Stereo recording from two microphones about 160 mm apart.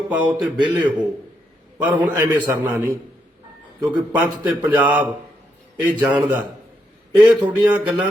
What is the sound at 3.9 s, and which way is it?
Speech, 10° right (ahead or behind).